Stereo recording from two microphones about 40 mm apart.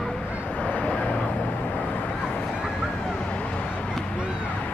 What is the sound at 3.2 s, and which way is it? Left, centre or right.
Vehicle, left.